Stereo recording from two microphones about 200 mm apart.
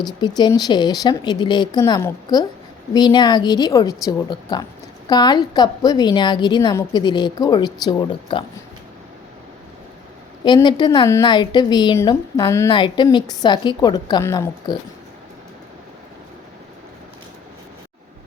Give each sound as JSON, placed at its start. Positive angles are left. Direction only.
{"t": 0.0, "sound": "a woman's voice", "side_deg": 20}
{"t": 10.4, "sound": "a woman's voice", "side_deg": 20}